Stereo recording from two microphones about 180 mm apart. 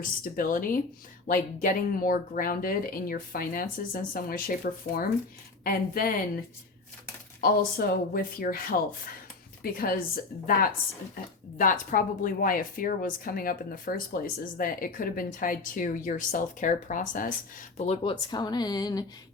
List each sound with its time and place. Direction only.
0.0 s speech: 50° left (ahead or behind)
7.4 s speech: 55° left (ahead or behind)
9.7 s speech: 55° left (ahead or behind); by 18.1 s 40° left (ahead or behind)
18.3 s a sound: 25° left (ahead or behind)